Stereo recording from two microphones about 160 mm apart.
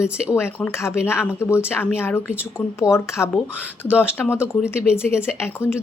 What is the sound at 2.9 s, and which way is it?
Speech, 5° right (ahead or behind).